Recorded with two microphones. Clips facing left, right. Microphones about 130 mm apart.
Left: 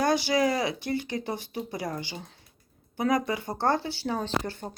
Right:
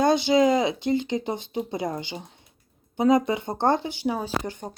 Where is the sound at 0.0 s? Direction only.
20° right (ahead or behind).